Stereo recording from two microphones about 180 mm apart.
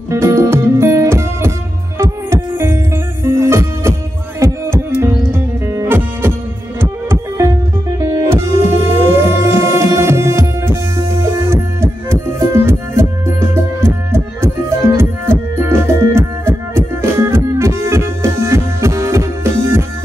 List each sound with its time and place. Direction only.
0.1 s music: 15° right (ahead or behind)
6.8 s heart sounds: 15° right (ahead or behind)
8.0 s music: 15° right (ahead or behind)